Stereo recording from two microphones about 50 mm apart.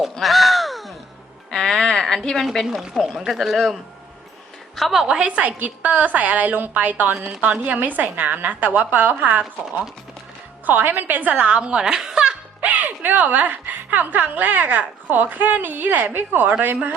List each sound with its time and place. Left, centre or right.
0.0 s crow: centre
1.5 s a sound: centre
2.9 s speech: centre
4.8 s speech: centre
5.0 s a woman's voice: right
10.7 s a woman's voice: right; by 12.4 s centre
12.5 s a woman's voice: right